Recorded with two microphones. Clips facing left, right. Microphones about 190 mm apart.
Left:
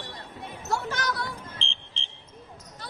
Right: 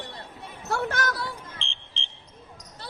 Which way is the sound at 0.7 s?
60° right (ahead or behind).